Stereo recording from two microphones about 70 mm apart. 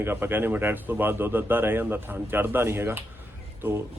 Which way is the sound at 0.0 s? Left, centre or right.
Right.